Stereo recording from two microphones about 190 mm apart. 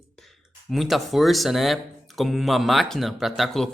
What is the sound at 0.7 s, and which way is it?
Speech, centre (ahead or behind).